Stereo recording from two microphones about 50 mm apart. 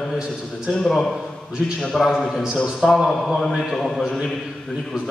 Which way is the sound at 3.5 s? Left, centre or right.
Centre.